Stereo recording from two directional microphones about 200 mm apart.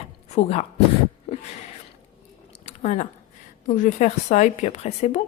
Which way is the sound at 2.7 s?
35° left (ahead or behind).